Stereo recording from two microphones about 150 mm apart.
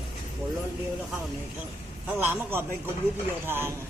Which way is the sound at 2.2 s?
15° right (ahead or behind).